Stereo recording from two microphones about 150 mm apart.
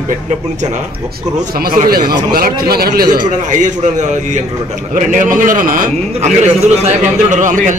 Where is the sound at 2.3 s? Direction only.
90° right.